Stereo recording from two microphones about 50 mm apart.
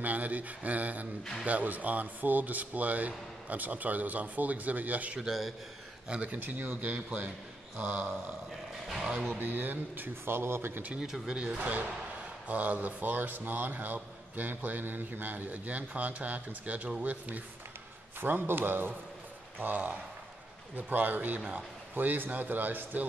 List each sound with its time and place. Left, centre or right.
0.0 s a man's voice: right
5.2 s a man's voice: centre
6.0 s speech: right
6.3 s a man's voice: right
8.8 s speech: centre
9.4 s a man's voice: right
10.2 s a man's voice: right
11.0 s speech: centre
11.3 s a man's voice: right
18.2 s a man's voice: right